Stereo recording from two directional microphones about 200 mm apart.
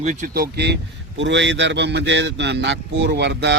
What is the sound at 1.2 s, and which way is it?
A man's voice, 65° right (ahead or behind).